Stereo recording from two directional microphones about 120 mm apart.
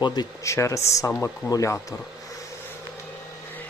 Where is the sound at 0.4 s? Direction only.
25° left (ahead or behind).